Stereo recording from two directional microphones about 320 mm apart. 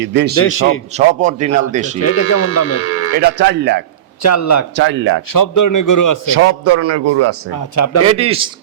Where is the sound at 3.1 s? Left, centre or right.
Right.